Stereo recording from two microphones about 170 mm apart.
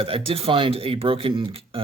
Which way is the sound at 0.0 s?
35° right (ahead or behind).